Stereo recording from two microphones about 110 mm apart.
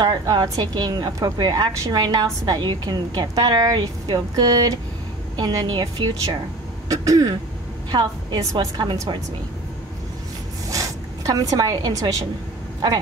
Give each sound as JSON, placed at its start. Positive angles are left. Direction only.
{"t": 0.0, "sound": "a woman's voice", "side_deg": -45}
{"t": 6.9, "sound": "a woman's voice", "side_deg": -30}
{"t": 10.7, "sound": "speech", "side_deg": -30}